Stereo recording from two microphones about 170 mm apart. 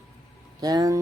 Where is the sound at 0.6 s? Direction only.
20° right (ahead or behind).